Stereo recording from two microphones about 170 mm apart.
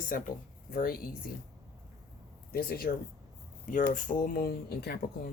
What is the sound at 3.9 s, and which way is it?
Speech, 50° left (ahead or behind).